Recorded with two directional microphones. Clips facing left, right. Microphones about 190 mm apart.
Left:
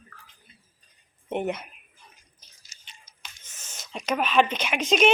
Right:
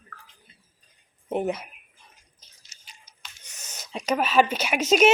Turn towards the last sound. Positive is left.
turn(degrees=-10)  # may be behind; listen again after turning